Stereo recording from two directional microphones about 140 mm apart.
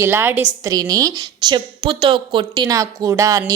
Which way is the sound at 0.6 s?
25° right (ahead or behind).